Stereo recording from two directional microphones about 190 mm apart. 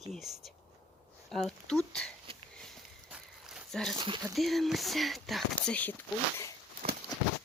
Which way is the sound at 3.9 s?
25° right (ahead or behind).